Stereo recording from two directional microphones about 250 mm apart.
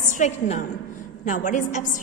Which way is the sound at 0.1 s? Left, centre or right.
Left.